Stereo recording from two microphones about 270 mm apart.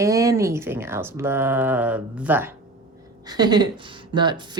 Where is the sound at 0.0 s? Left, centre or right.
Centre.